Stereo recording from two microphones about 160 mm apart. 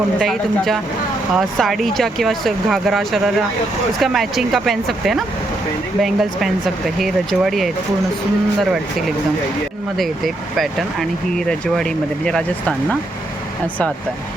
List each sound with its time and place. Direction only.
0.2 s speech: centre (ahead or behind)
10.0 s speech: centre (ahead or behind)